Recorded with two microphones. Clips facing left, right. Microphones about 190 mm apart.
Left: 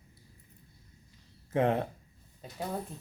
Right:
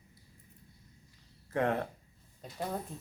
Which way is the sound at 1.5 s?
20° left (ahead or behind).